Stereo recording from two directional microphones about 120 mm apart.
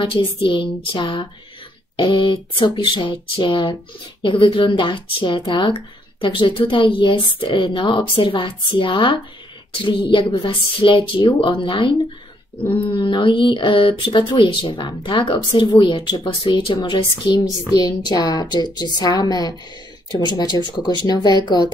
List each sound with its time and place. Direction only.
0.0 s speech: 45° left (ahead or behind)